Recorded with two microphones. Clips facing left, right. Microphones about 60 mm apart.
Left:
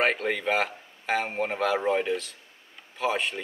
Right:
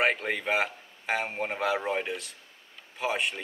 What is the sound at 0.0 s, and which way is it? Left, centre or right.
A man's voice, centre.